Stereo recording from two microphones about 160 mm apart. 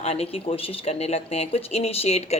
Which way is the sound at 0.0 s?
40° left (ahead or behind).